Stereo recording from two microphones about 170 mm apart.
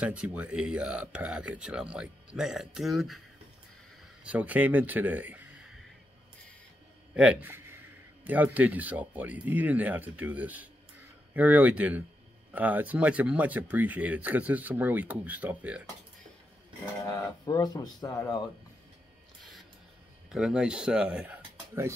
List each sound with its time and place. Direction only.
0.0 s speech: 5° right (ahead or behind)
4.2 s speech: 10° right (ahead or behind)
7.2 s a man's voice: 10° right (ahead or behind)
17.0 s speech: 20° left (ahead or behind)
20.2 s speech: 5° right (ahead or behind)